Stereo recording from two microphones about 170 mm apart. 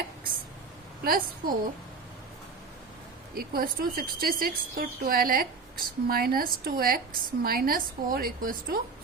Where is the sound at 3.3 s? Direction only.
60° right (ahead or behind).